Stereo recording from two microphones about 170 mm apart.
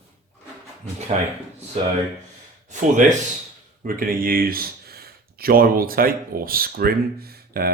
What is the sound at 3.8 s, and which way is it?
Speech, 55° right (ahead or behind).